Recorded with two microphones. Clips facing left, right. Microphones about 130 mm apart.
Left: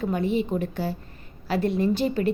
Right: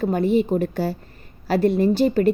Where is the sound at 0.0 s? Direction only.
40° right (ahead or behind).